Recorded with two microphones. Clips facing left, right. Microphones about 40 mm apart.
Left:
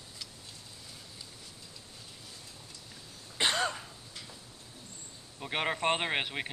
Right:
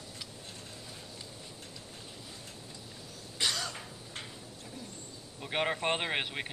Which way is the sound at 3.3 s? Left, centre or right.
Left.